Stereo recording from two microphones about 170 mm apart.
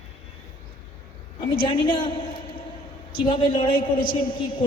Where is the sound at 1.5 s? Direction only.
30° left (ahead or behind).